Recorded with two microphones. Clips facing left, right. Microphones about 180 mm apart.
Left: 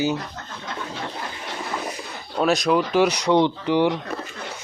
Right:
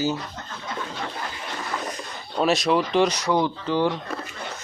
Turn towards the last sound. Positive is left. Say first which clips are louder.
# left 3 dB
turn(degrees=15)  # may be behind; listen again after turning